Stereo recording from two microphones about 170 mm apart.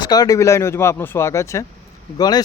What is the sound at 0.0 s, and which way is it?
Speech, 25° left (ahead or behind).